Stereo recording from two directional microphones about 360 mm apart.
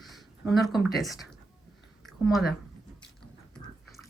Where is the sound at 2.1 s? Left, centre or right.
Centre.